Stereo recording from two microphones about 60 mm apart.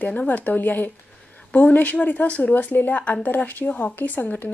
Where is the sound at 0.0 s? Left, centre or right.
Left.